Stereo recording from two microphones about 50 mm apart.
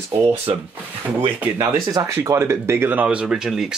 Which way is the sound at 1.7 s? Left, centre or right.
Right.